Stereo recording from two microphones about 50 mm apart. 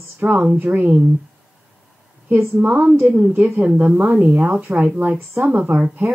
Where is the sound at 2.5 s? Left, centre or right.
Right.